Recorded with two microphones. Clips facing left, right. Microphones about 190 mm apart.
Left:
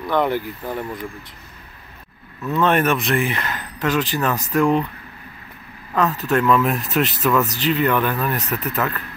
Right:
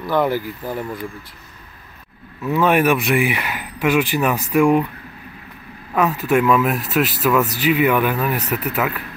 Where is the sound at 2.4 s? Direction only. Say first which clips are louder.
Right 2 dB; 10° right (ahead or behind).